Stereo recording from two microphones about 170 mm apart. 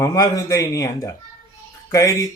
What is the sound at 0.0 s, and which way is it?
Speech, 20° left (ahead or behind).